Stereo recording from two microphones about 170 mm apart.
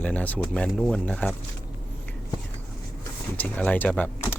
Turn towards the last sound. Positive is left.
turn(degrees=10)  # may be behind; listen again after turning